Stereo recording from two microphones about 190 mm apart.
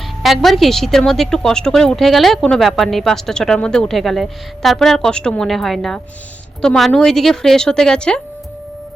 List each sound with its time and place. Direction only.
0.2 s a woman's voice: centre (ahead or behind)